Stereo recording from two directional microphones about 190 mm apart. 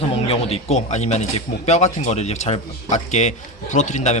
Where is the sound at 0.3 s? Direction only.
30° left (ahead or behind).